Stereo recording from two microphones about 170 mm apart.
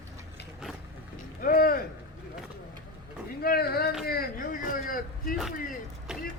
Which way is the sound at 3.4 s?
65° left (ahead or behind).